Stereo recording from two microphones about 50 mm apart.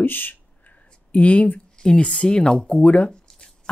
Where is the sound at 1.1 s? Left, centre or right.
Left.